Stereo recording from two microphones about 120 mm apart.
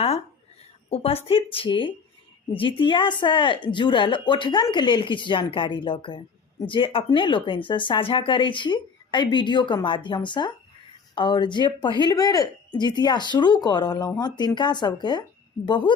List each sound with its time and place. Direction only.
0.9 s a woman's voice: 55° left (ahead or behind)